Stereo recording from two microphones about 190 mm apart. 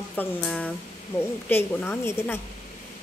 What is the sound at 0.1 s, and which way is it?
A woman's voice, 5° left (ahead or behind).